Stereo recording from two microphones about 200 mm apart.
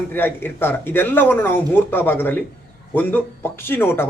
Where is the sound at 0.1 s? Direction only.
10° left (ahead or behind).